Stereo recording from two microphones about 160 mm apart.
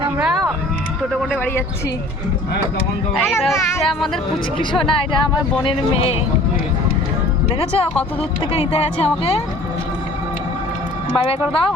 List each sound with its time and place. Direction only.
0.2 s a sound: 5° right (ahead or behind)
3.2 s speech: 15° left (ahead or behind)
4.9 s speech: 30° left (ahead or behind)
7.6 s speech: 40° left (ahead or behind)
11.2 s speech: 35° left (ahead or behind)